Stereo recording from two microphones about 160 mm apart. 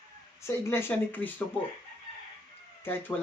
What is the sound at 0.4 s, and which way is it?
Speech, 15° left (ahead or behind).